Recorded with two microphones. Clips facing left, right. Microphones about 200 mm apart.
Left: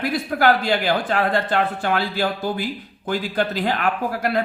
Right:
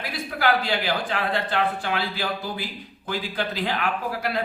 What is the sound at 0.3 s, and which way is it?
Speech, 50° left (ahead or behind).